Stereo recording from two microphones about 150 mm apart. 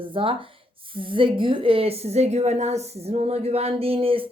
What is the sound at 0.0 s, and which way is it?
A woman's voice, 35° right (ahead or behind).